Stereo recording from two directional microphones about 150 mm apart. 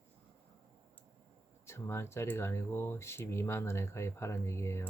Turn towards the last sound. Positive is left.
turn(degrees=15)  # may be behind; listen again after turning